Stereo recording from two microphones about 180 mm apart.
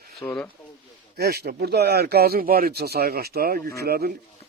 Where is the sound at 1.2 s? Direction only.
60° right (ahead or behind).